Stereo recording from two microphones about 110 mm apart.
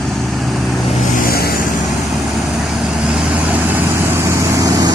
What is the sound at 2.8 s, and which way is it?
Vehicle, 10° right (ahead or behind).